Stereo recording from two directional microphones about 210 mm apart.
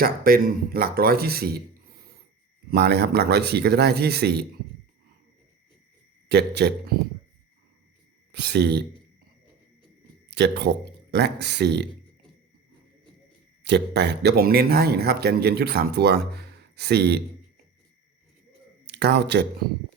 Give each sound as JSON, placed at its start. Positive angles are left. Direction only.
{"t": 0.0, "sound": "a man's voice", "side_deg": -45}
{"t": 2.6, "sound": "a man's voice", "side_deg": -50}
{"t": 6.2, "sound": "a man's voice", "side_deg": -50}
{"t": 8.3, "sound": "a man's voice", "side_deg": -55}
{"t": 10.3, "sound": "a man's voice", "side_deg": -55}
{"t": 13.7, "sound": "a man's voice", "side_deg": -55}
{"t": 18.9, "sound": "speech", "side_deg": -55}